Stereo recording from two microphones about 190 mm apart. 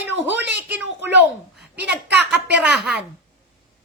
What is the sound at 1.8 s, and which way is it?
Speech, 65° right (ahead or behind).